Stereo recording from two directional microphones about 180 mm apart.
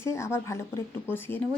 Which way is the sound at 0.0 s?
15° left (ahead or behind).